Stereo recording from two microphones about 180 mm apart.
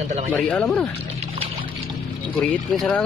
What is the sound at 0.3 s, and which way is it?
Speech, 10° left (ahead or behind).